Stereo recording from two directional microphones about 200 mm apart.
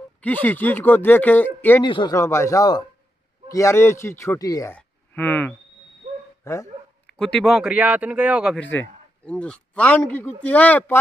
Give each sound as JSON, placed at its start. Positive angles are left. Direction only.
{"t": 0.2, "sound": "a man's voice", "side_deg": 10}
{"t": 1.8, "sound": "a man's voice", "side_deg": 20}
{"t": 6.4, "sound": "telephone dialing", "side_deg": 15}
{"t": 7.2, "sound": "speech", "side_deg": 5}
{"t": 8.5, "sound": "a man's voice", "side_deg": 10}